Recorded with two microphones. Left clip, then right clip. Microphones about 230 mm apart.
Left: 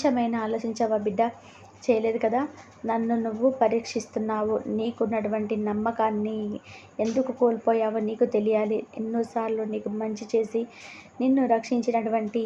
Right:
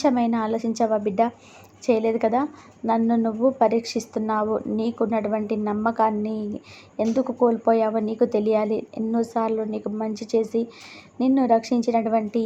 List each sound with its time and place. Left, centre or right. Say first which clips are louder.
0.0 s a woman's voice: right 3 dB; centre